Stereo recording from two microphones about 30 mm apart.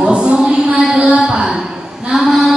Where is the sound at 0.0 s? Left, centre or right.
Right.